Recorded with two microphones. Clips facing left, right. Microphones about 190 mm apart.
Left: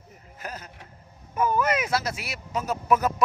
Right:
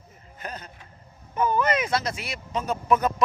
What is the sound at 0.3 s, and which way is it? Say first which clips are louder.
Speech: right 1 dB; 5° left (ahead or behind).